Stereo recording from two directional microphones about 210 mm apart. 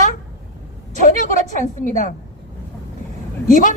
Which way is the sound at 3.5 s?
40° left (ahead or behind).